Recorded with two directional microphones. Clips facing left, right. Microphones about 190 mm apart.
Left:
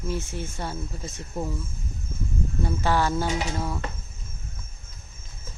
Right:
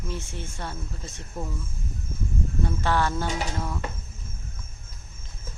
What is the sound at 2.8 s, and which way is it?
Speech, 10° left (ahead or behind).